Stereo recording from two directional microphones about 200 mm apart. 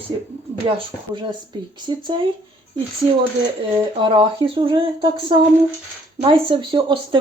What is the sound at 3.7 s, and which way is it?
Speech, 25° right (ahead or behind).